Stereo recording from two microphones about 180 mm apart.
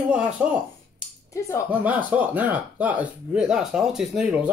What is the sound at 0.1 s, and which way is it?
Speech, 5° right (ahead or behind).